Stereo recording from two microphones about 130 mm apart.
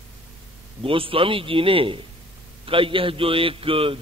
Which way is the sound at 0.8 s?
45° right (ahead or behind).